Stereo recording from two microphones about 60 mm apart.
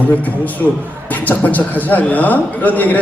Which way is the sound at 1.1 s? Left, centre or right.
Left.